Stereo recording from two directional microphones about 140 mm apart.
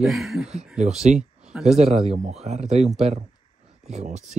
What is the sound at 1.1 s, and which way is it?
Speech, 60° right (ahead or behind).